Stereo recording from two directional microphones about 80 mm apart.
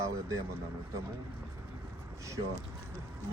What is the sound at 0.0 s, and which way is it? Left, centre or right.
Speech, right.